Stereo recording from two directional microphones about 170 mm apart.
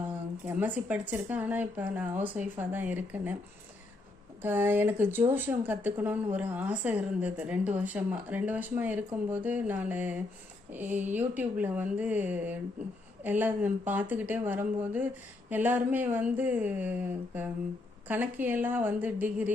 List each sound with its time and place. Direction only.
0.4 s speech: 10° right (ahead or behind)
4.4 s speech: 10° right (ahead or behind)